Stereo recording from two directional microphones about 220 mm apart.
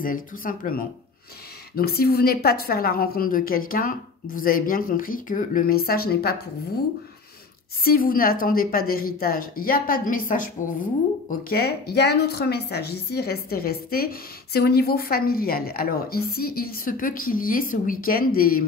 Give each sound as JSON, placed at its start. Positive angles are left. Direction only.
{"t": 0.0, "sound": "a woman's voice", "side_deg": 40}
{"t": 1.8, "sound": "a woman's voice", "side_deg": 45}
{"t": 7.8, "sound": "a woman's voice", "side_deg": 40}